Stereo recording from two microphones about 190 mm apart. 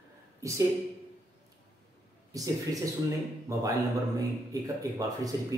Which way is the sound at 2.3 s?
20° right (ahead or behind).